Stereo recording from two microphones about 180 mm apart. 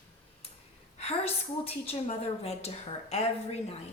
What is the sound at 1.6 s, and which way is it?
Speech, 35° left (ahead or behind).